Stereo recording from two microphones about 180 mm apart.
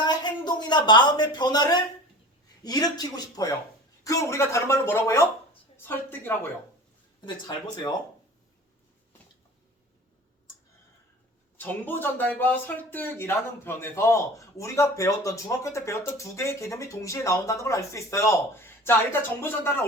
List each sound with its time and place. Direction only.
0.0 s a sound: 25° left (ahead or behind)
2.6 s speech: 20° left (ahead or behind)
7.3 s speech: 25° left (ahead or behind)
11.5 s speech: 10° left (ahead or behind)